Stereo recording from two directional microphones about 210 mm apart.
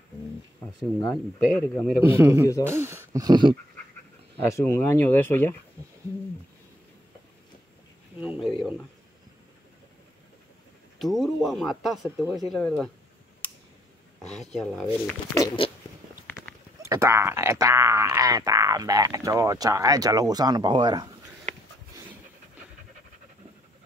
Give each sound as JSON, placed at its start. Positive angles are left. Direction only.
{"t": 1.4, "sound": "speech", "side_deg": 0}
{"t": 2.0, "sound": "speech", "side_deg": -10}
{"t": 4.4, "sound": "speech", "side_deg": 15}
{"t": 8.2, "sound": "a sound", "side_deg": -5}
{"t": 11.0, "sound": "speech", "side_deg": 0}
{"t": 13.4, "sound": "a sound", "side_deg": 10}
{"t": 14.2, "sound": "speech", "side_deg": 0}
{"t": 15.3, "sound": "a sound", "side_deg": 20}
{"t": 16.8, "sound": "speech", "side_deg": -15}